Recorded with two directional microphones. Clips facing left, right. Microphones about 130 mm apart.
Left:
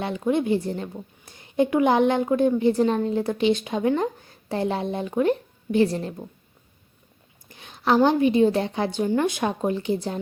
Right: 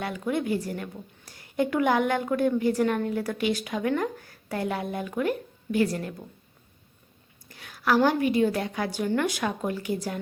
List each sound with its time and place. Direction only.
0.0 s a woman's voice: 25° left (ahead or behind)
7.4 s a woman's voice: 20° left (ahead or behind)